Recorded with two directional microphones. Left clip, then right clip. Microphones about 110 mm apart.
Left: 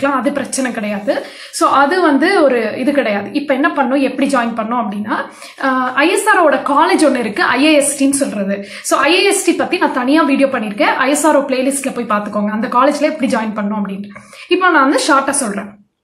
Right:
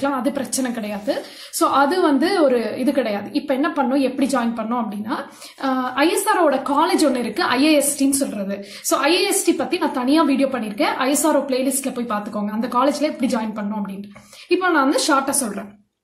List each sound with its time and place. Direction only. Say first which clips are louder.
0.0 s speech: left 6 dB; 25° right (ahead or behind)